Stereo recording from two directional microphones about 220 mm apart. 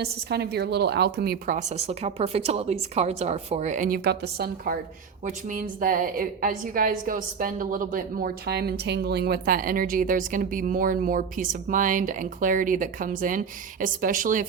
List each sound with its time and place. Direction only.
0.0 s a woman's voice: 45° right (ahead or behind)